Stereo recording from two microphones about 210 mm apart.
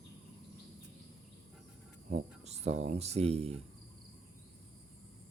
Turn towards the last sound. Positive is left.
turn(degrees=-30)  # may be behind; listen again after turning